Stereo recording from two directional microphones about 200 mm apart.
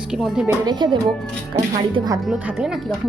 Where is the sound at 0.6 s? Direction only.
20° right (ahead or behind).